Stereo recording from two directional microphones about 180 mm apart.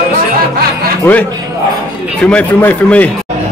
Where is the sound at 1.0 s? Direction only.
10° left (ahead or behind).